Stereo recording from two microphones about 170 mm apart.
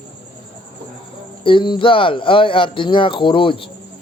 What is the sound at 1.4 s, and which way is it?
Speech, 30° left (ahead or behind).